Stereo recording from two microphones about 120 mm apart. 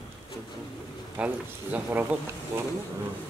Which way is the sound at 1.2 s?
15° right (ahead or behind).